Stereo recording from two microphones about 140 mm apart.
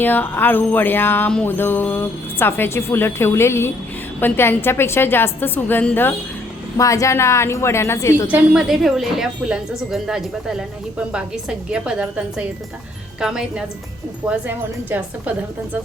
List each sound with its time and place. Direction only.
0.0 s music: 15° left (ahead or behind)
6.7 s a woman's voice: 25° left (ahead or behind)
8.3 s a woman's voice: 5° right (ahead or behind)